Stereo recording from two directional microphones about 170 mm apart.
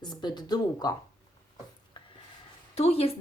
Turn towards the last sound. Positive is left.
turn(degrees=35)  # may be behind; listen again after turning